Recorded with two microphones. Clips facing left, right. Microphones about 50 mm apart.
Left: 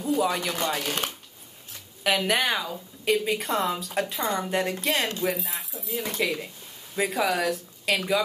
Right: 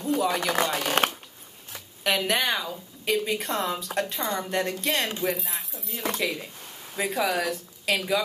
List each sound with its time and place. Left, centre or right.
0.2 s a woman's voice: centre
1.0 s speech: right
2.0 s a woman's voice: centre